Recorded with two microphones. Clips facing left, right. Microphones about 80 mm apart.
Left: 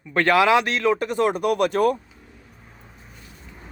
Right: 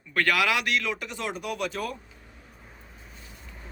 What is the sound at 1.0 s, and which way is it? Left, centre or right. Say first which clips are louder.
Speech: left 12 dB; left.